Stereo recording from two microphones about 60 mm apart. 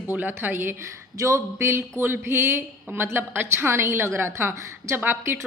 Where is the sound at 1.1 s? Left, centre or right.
Right.